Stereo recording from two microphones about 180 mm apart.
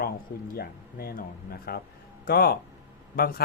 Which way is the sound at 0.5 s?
60° left (ahead or behind).